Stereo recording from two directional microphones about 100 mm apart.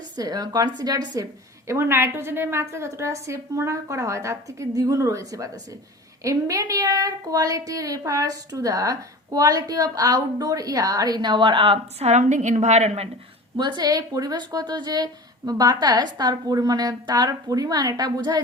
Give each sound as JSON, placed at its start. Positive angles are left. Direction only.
{"t": 0.2, "sound": "a woman's voice", "side_deg": -40}
{"t": 1.6, "sound": "a woman's voice", "side_deg": -25}
{"t": 12.6, "sound": "a woman's voice", "side_deg": -90}
{"t": 13.6, "sound": "a woman's voice", "side_deg": -50}